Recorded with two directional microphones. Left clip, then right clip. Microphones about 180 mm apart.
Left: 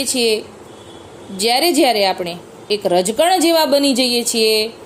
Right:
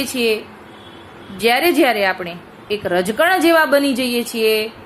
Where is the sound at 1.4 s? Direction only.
20° left (ahead or behind).